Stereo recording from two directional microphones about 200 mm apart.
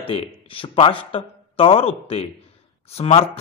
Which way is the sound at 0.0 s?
25° left (ahead or behind).